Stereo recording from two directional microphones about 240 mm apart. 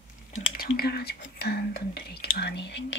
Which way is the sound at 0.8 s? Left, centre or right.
Left.